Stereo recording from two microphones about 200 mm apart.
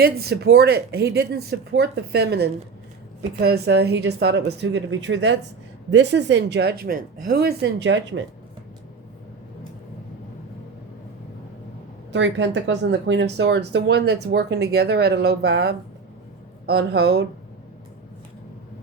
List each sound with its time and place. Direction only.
0.0 s speech: 50° right (ahead or behind)
12.1 s speech: 65° right (ahead or behind)